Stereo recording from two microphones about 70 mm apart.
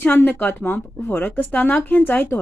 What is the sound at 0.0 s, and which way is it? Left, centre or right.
Speech, left.